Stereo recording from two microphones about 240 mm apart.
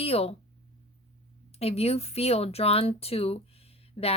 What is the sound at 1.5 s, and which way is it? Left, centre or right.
Speech, left.